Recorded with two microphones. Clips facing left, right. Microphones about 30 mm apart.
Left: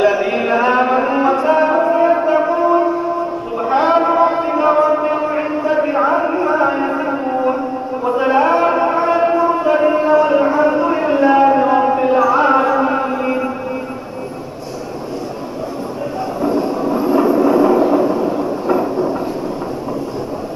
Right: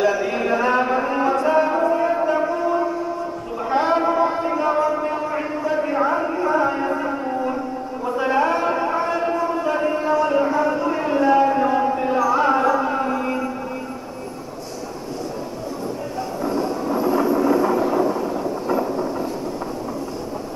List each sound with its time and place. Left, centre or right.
0.0 s music: left
8.2 s a sound: left
16.3 s train: centre